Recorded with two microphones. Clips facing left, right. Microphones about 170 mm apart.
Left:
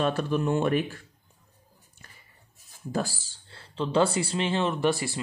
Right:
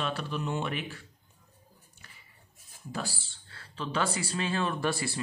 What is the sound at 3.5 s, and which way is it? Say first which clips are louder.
Speech: left 8 dB; 30° left (ahead or behind).